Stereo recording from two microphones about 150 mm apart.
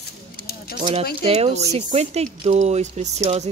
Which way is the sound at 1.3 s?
45° right (ahead or behind).